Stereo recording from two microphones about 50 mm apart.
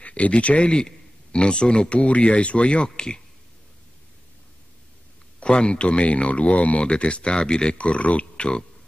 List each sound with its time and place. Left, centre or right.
0.0 s speech: left
5.4 s speech: left